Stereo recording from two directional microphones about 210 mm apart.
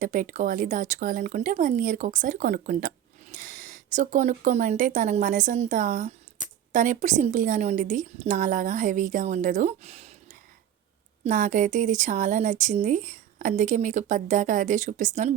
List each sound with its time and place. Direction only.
0.0 s speech: 40° right (ahead or behind)
11.2 s speech: 35° right (ahead or behind)